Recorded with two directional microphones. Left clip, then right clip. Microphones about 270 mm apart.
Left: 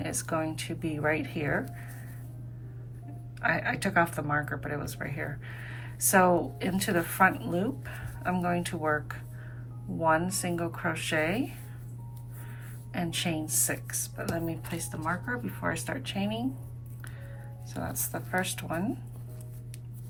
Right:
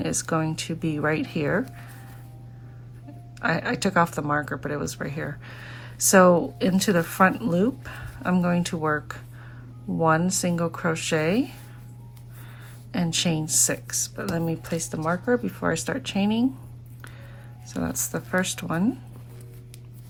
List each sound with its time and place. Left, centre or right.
0.0 s speech: centre
3.4 s speech: centre
12.9 s speech: centre
17.7 s speech: right